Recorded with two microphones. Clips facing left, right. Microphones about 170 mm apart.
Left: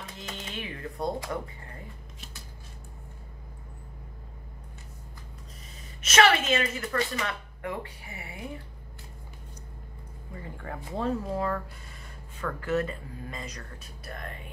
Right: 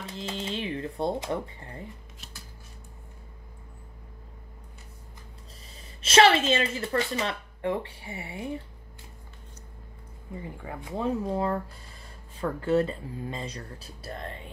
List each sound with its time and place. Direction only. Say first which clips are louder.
0.0 s a sound: right 6 dB; 30° right (ahead or behind)
2.1 s shuffling cards: left 1 dB; centre (ahead or behind)
5.9 s speech: right 3 dB; 30° right (ahead or behind)
10.6 s speech: even; 5° right (ahead or behind)
11.3 s speech: right 2 dB; 25° right (ahead or behind)